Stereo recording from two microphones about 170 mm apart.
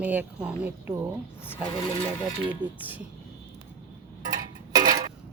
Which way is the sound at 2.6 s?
10° right (ahead or behind).